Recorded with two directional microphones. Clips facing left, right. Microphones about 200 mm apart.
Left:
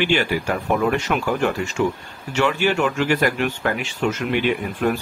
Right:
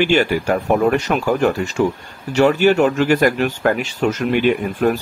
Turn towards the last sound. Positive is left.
turn(degrees=-45)  # may be behind; listen again after turning